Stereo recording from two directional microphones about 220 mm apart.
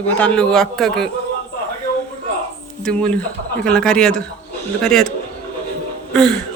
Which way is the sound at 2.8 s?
5° left (ahead or behind).